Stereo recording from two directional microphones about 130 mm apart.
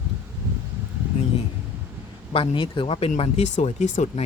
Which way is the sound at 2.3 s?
40° left (ahead or behind).